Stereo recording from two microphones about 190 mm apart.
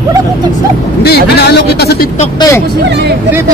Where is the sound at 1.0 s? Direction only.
60° left (ahead or behind).